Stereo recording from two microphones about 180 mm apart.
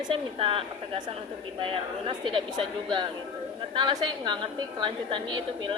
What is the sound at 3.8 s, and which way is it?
A woman's voice, 25° right (ahead or behind).